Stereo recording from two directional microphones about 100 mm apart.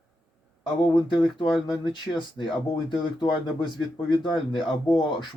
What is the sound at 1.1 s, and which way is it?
Speech, 50° left (ahead or behind).